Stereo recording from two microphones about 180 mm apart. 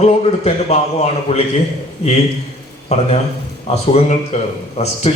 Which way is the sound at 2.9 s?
35° left (ahead or behind).